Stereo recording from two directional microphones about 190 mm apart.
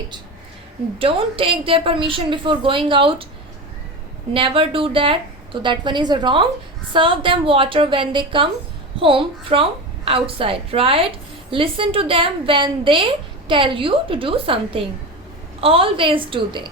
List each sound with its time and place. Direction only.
0.9 s a woman's voice: 30° right (ahead or behind)
4.4 s a woman's voice: 30° right (ahead or behind)